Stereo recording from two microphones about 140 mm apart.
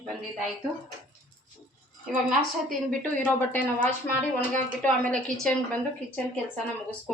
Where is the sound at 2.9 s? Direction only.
10° left (ahead or behind).